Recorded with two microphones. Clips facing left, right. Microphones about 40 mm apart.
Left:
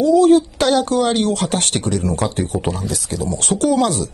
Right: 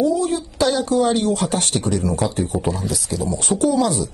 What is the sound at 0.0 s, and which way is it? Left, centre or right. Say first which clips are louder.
Speech: left 8 dB; left.